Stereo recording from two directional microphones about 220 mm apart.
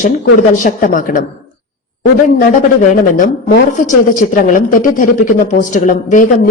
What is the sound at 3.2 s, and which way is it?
A woman's voice, 35° left (ahead or behind).